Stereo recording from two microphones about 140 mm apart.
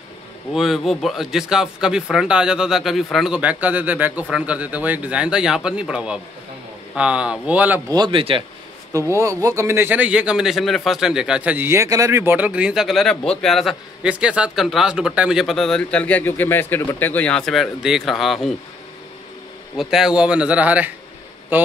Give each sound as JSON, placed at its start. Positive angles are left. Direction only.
{"t": 0.5, "sound": "a man's voice", "side_deg": 0}
{"t": 7.9, "sound": "speech", "side_deg": -35}
{"t": 9.1, "sound": "a man's voice", "side_deg": -20}
{"t": 19.8, "sound": "speech", "side_deg": -5}